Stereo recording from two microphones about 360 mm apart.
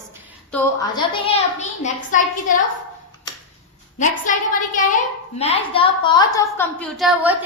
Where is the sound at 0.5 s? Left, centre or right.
Centre.